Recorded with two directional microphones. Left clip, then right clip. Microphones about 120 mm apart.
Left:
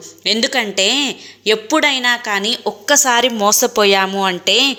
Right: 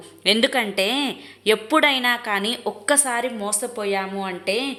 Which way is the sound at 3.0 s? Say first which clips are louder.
Left 11 dB; 40° left (ahead or behind).